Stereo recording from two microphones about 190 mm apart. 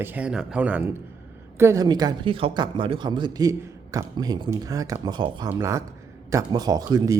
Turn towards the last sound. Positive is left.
turn(degrees=-20)  # may be behind; listen again after turning